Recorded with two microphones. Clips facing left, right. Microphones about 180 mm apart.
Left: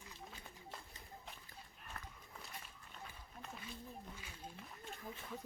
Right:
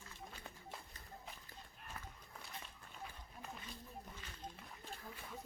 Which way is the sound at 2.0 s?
5° right (ahead or behind).